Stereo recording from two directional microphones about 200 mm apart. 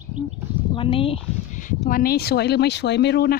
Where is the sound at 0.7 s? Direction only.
25° left (ahead or behind).